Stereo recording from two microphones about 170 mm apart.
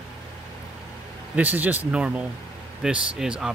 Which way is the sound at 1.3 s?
10° right (ahead or behind).